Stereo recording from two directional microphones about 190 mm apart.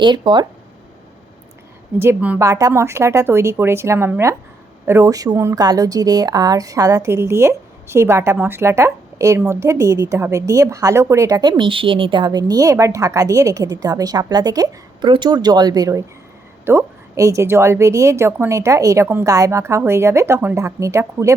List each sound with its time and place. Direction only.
0.0 s a woman's voice: 25° right (ahead or behind)
2.0 s a woman's voice: 10° right (ahead or behind)